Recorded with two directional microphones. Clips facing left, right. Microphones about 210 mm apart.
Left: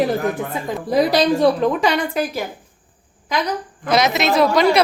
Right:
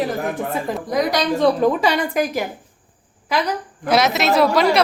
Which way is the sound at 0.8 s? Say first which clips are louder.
Left 5 dB; 30° left (ahead or behind).